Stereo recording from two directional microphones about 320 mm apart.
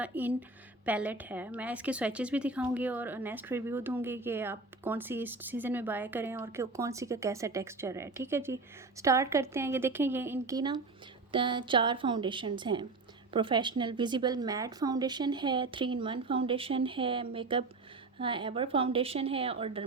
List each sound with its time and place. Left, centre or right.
0.0 s a woman's voice: centre